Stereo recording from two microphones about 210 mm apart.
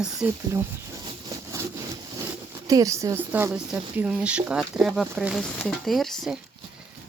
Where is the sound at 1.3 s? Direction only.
15° right (ahead or behind).